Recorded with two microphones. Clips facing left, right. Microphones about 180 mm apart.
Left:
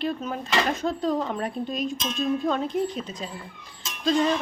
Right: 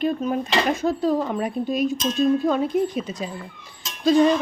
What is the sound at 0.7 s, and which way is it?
Speech, 5° right (ahead or behind).